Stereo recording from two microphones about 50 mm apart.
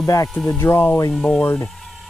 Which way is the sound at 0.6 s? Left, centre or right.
Left.